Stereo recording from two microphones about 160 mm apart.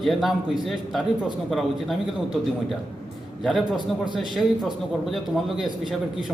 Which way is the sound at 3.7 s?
30° right (ahead or behind).